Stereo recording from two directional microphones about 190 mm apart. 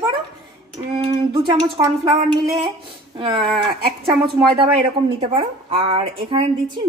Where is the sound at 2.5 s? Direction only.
20° right (ahead or behind).